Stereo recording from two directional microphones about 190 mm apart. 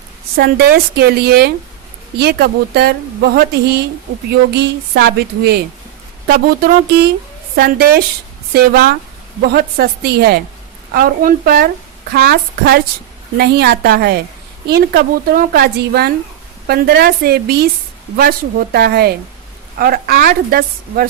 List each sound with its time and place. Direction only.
0.3 s a woman's voice: 55° right (ahead or behind)